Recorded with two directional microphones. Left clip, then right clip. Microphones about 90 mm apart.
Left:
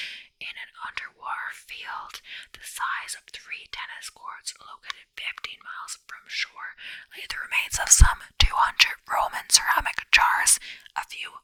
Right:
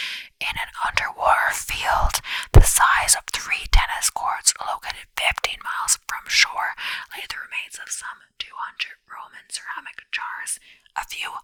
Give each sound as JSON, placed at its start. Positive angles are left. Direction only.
{"t": 0.3, "sound": "whispering", "side_deg": -40}
{"t": 7.5, "sound": "whispering", "side_deg": 15}
{"t": 11.1, "sound": "whispering", "side_deg": -20}